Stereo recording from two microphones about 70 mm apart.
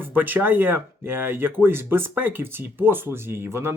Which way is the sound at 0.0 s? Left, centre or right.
Right.